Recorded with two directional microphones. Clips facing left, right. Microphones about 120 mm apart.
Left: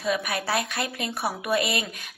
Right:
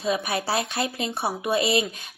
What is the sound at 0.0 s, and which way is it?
A woman's voice, 30° right (ahead or behind).